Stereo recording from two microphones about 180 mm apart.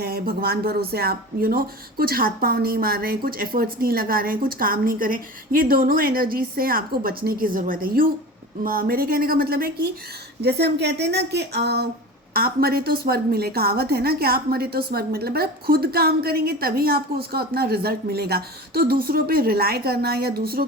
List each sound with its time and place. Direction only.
0.0 s a woman's voice: 55° right (ahead or behind)